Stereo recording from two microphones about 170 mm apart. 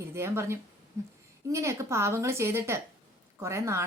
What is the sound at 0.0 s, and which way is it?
A woman's voice, 15° right (ahead or behind).